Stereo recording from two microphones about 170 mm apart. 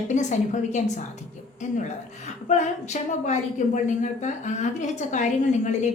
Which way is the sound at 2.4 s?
45° left (ahead or behind).